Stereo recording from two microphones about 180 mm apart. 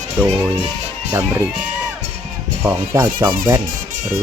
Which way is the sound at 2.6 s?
10° right (ahead or behind).